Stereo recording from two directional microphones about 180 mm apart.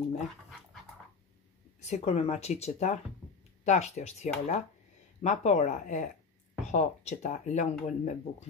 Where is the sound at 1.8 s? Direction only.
35° left (ahead or behind).